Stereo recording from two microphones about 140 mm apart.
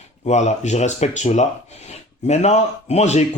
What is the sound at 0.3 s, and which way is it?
Speech, 55° left (ahead or behind).